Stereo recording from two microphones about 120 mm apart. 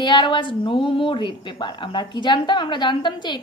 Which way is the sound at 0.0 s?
40° left (ahead or behind).